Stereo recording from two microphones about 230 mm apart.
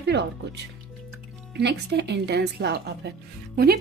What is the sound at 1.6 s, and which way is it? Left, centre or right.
A woman's voice, right.